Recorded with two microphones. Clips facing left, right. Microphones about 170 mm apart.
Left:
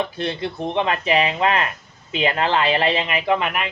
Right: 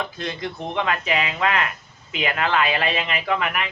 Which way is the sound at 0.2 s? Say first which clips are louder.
Left 4 dB; 30° left (ahead or behind).